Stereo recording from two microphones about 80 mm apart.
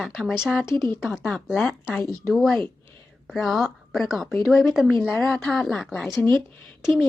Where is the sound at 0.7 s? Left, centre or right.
Left.